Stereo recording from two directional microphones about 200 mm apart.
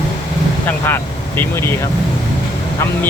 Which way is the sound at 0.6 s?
10° left (ahead or behind).